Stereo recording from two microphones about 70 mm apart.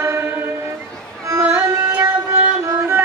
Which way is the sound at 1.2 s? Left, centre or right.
Right.